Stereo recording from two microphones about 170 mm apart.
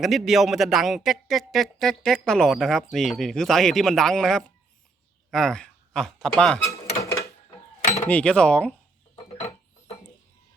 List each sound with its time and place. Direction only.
0.0 s speech: centre (ahead or behind)
6.7 s dishes: 20° left (ahead or behind)
8.0 s speech: 5° left (ahead or behind)
9.4 s a sound: 35° left (ahead or behind)